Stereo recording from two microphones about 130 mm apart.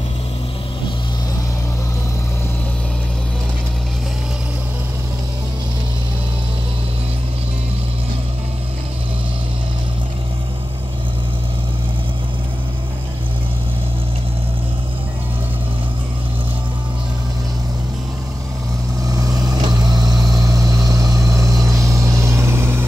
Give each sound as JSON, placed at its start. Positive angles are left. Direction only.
{"t": 19.0, "sound": "vehicle", "side_deg": -25}